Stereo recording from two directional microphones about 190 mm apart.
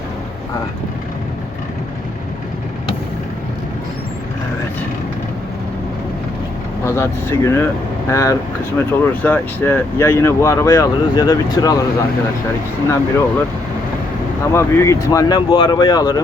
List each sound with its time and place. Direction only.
6.8 s speech: 15° left (ahead or behind)
12.9 s speech: 10° left (ahead or behind)
14.5 s speech: 15° left (ahead or behind)